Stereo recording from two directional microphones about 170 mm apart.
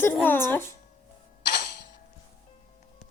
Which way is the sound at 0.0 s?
10° left (ahead or behind).